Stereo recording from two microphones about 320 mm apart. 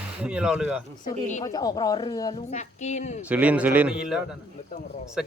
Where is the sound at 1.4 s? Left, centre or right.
Centre.